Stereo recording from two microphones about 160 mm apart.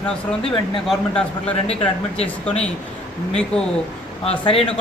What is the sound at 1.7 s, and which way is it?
Speech, 40° left (ahead or behind).